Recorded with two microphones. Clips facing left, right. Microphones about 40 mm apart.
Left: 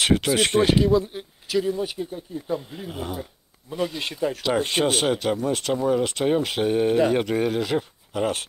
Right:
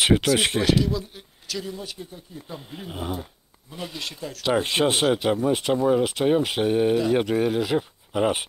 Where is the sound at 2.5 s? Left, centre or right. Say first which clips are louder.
Left 2 dB; centre.